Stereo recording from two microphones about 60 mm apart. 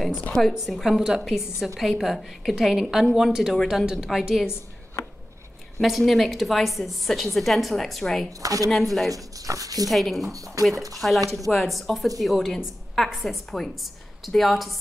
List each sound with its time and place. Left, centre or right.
0.5 s a woman's voice: centre
5.8 s a woman's voice: centre
8.4 s speech: right
8.6 s a woman's voice: centre
9.1 s speech: right
9.8 s a woman's voice: centre